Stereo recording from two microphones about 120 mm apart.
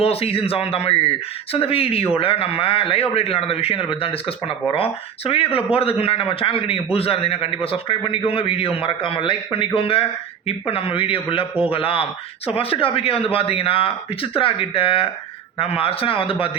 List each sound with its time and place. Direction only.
0.0 s speech: 55° left (ahead or behind)